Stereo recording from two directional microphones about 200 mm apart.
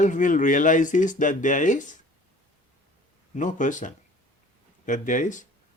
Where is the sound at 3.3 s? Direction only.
40° left (ahead or behind).